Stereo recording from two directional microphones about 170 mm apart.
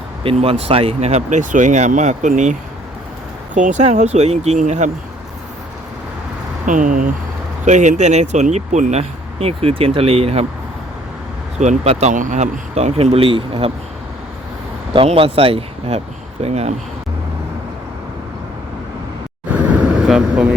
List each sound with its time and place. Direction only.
0.2 s speech: 35° right (ahead or behind)
6.7 s speech: 50° right (ahead or behind)
11.6 s speech: 40° right (ahead or behind)
14.9 s speech: 35° right (ahead or behind)
19.5 s vehicle: 10° right (ahead or behind)